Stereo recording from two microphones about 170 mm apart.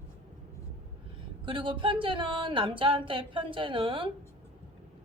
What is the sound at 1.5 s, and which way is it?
Speech, 30° right (ahead or behind).